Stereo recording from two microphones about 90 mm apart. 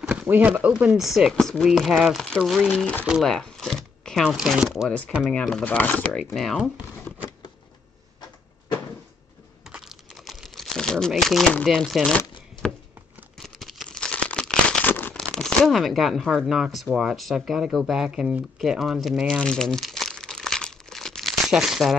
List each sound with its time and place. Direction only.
0.0 s a sound: 10° right (ahead or behind)
0.3 s speech: 20° right (ahead or behind)
1.0 s speech: 5° right (ahead or behind)
1.3 s speech: 5° left (ahead or behind)
3.3 s a sound: 5° left (ahead or behind)
4.8 s speech: 15° left (ahead or behind)
6.1 s speech: centre (ahead or behind)
9.7 s crumpling: 5° right (ahead or behind)
11.6 s speech: centre (ahead or behind)
13.4 s crumpling: centre (ahead or behind)
14.9 s crumpling: 20° left (ahead or behind)
15.1 s speech: 5° left (ahead or behind)
19.4 s crumpling: 5° left (ahead or behind)